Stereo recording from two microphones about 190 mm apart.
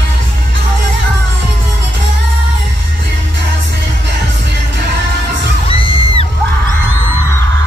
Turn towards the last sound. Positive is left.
turn(degrees=30)  # may be behind; listen again after turning